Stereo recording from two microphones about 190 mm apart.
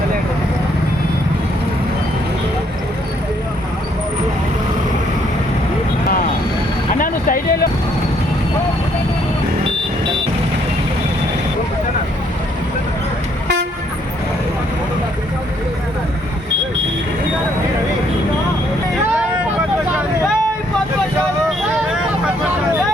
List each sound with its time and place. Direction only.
7.0 s vehicle: 45° left (ahead or behind)